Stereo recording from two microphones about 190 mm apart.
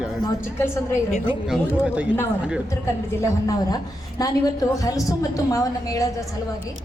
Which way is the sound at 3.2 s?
20° left (ahead or behind).